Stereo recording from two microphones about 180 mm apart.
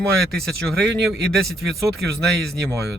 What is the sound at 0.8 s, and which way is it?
Speech, 70° right (ahead or behind).